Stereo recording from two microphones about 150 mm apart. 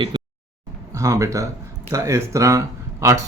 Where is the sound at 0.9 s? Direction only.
20° right (ahead or behind).